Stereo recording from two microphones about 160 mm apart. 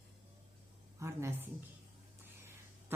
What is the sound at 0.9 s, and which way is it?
Speech, 15° right (ahead or behind).